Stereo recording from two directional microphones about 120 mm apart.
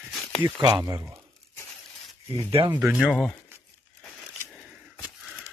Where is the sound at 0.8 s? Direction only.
25° right (ahead or behind).